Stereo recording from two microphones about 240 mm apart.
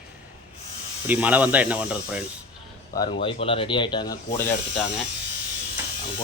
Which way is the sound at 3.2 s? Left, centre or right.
Left.